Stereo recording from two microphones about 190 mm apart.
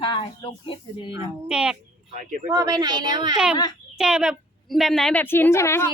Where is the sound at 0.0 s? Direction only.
25° left (ahead or behind).